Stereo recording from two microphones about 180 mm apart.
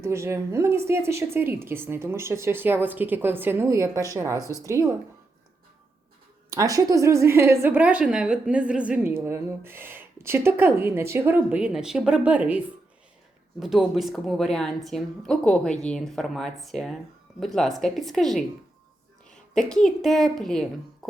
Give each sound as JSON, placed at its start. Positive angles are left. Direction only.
{"t": 0.0, "sound": "a woman's voice", "side_deg": -15}
{"t": 6.5, "sound": "a woman's voice", "side_deg": -20}